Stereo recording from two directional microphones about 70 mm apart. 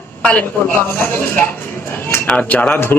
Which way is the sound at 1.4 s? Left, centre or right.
Left.